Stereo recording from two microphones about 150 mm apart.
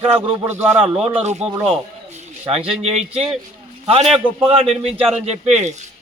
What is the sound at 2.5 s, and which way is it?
Speech, 40° right (ahead or behind).